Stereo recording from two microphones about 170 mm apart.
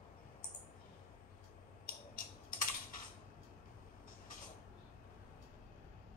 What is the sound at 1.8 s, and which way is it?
Typing, 55° left (ahead or behind).